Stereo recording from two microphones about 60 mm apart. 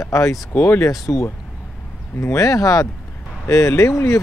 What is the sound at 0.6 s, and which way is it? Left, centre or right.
Speech, left.